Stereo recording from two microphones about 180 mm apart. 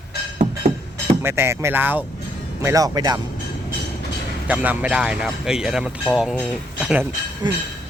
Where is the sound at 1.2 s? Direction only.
15° right (ahead or behind).